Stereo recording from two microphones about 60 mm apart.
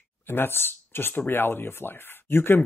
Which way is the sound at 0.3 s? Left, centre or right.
Left.